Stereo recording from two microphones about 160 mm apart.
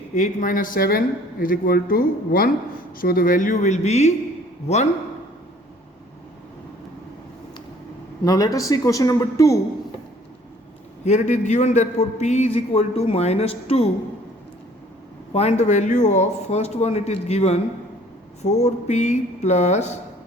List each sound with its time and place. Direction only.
0.1 s a man's voice: 50° left (ahead or behind)
8.2 s speech: 20° left (ahead or behind)
11.0 s a man's voice: 45° left (ahead or behind)
15.3 s a man's voice: 40° left (ahead or behind)